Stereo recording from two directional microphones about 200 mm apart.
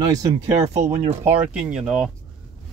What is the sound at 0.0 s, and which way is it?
Speech, 20° right (ahead or behind).